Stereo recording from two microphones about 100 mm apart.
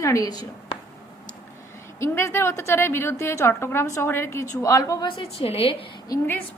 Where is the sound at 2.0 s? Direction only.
25° left (ahead or behind).